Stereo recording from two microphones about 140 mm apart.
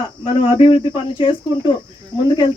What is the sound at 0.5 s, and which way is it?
Speech, 40° left (ahead or behind).